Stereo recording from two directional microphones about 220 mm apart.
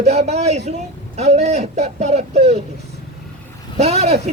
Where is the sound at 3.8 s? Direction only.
30° right (ahead or behind).